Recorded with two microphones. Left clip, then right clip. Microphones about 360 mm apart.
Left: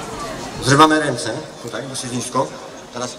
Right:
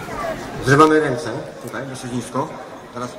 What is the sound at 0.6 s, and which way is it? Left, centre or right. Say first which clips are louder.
Speech: left 1 dB; left.